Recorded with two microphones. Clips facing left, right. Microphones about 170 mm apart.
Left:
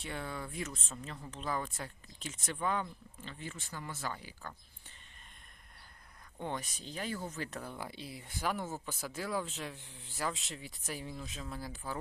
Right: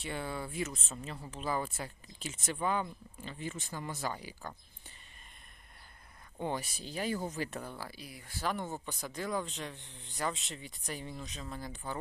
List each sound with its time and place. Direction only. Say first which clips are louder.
0.0 s speech: right 3 dB; centre (ahead or behind)
6.4 s speech: right 3 dB; 10° right (ahead or behind)
7.8 s speech: left 2 dB; 25° left (ahead or behind)
8.4 s speech: right 1 dB; 10° left (ahead or behind)